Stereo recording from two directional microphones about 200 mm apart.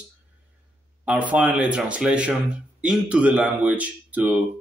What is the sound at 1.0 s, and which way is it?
Speech, 5° right (ahead or behind).